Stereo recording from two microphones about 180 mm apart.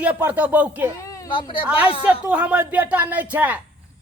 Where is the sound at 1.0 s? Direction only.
20° left (ahead or behind).